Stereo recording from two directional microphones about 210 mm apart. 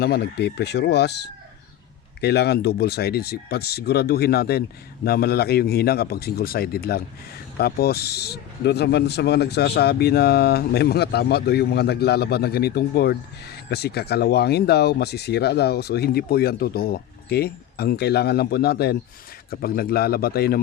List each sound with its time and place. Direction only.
0.0 s a man's voice: 50° left (ahead or behind)